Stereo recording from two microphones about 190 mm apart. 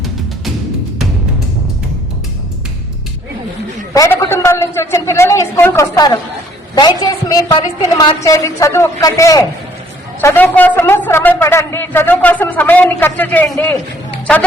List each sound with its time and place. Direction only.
3.9 s a man's voice: 20° left (ahead or behind)